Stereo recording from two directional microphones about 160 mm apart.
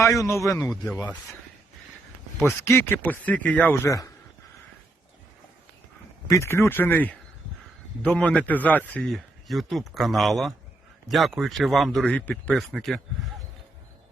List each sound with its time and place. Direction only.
0.0 s a man's voice: 20° left (ahead or behind)
0.7 s a man's voice: 5° left (ahead or behind)
2.4 s speech: 15° left (ahead or behind)
6.2 s a man's voice: 20° left (ahead or behind); by 13.0 s centre (ahead or behind)